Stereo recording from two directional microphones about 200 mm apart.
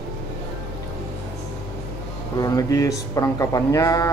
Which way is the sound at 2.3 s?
15° left (ahead or behind).